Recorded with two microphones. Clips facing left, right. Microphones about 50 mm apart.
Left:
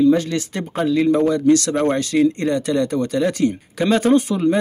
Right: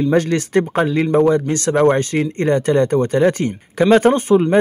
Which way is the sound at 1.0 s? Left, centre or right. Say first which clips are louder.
Even; right.